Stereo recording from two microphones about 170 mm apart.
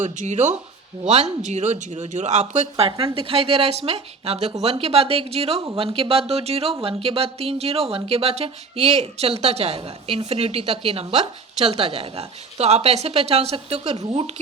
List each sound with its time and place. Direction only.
0.0 s speech: 45° right (ahead or behind)